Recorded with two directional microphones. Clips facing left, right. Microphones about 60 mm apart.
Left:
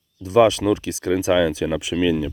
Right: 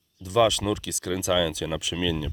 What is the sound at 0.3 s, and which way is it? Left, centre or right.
Speech, left.